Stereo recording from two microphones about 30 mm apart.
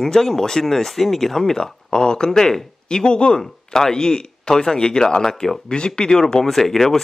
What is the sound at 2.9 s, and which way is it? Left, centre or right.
Speech, left.